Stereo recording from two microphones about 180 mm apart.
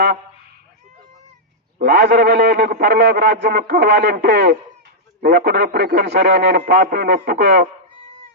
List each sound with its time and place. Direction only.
1.8 s a man's voice: 55° right (ahead or behind)